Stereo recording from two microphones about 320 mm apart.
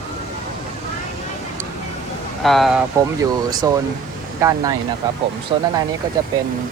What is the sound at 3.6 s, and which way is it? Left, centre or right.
Speech, centre.